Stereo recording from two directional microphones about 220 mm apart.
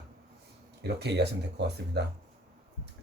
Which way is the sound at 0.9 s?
50° right (ahead or behind).